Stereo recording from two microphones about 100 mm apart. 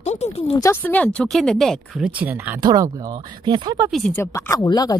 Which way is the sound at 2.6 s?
40° right (ahead or behind).